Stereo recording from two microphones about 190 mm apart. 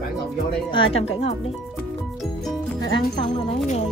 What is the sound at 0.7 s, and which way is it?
Speech, 30° left (ahead or behind).